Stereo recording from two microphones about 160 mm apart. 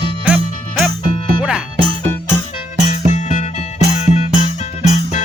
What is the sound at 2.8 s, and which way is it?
Music, 50° left (ahead or behind).